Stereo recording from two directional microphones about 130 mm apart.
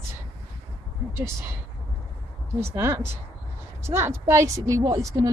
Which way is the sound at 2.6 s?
20° right (ahead or behind).